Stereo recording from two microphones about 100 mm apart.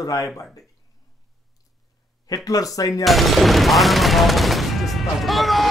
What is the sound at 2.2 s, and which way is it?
Speech, 35° left (ahead or behind).